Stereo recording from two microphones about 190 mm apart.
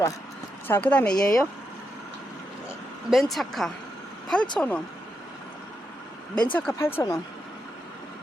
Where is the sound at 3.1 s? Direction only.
Centre (ahead or behind).